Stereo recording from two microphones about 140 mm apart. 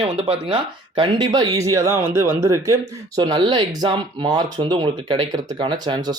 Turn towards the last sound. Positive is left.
turn(degrees=-30)  # may be behind; listen again after turning